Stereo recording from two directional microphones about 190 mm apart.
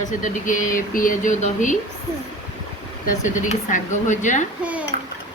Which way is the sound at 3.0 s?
40° left (ahead or behind).